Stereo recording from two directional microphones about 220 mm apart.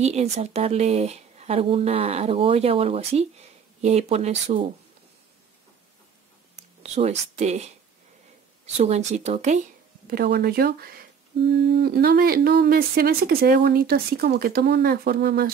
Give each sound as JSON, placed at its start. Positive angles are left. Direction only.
{"t": 0.0, "sound": "speech", "side_deg": -30}
{"t": 6.8, "sound": "speech", "side_deg": -30}
{"t": 8.7, "sound": "speech", "side_deg": -30}